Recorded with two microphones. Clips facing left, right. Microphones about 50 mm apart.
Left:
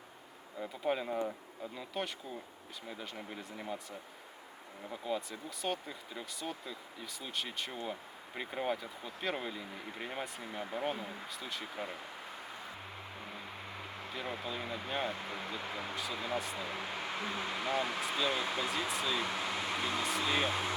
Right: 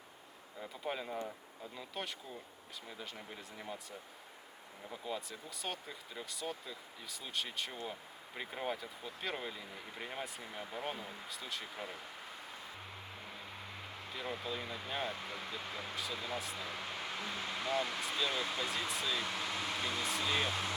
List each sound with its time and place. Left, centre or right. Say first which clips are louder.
0.6 s speech: left 6 dB; centre
4.9 s speech: left 4 dB; centre
14.1 s speech: left 1 dB; centre
16.4 s speech: left 3 dB; centre
16.6 s speech: left 3 dB; centre
20.0 s speech: left 3 dB; centre